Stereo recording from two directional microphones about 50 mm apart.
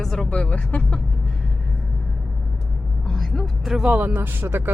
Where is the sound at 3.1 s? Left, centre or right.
Centre.